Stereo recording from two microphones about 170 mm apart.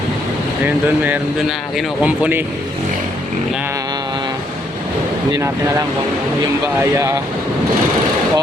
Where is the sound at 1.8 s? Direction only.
10° right (ahead or behind).